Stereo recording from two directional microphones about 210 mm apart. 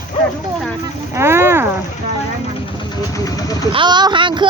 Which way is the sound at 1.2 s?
10° right (ahead or behind).